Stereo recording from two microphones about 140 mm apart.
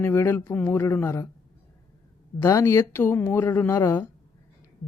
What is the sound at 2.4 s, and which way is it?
A woman's voice, 20° left (ahead or behind).